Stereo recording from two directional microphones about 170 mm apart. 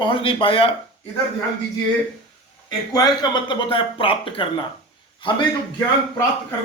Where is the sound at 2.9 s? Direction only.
25° left (ahead or behind).